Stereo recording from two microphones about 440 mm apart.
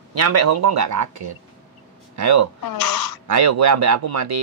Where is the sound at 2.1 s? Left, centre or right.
Right.